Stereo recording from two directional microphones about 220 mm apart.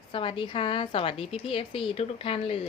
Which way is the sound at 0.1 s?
25° left (ahead or behind).